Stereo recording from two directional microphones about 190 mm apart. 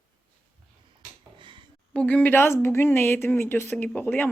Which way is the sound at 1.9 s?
5° left (ahead or behind).